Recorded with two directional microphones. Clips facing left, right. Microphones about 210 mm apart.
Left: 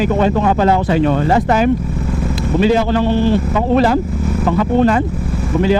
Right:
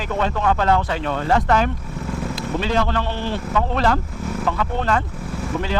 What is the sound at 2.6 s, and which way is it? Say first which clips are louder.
Speech: left 9 dB; 10° left (ahead or behind).